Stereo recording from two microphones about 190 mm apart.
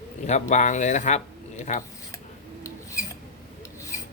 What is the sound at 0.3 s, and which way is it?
Speech, 40° left (ahead or behind).